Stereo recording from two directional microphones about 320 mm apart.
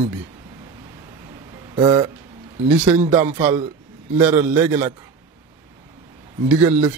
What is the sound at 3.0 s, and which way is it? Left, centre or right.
A man's voice, centre.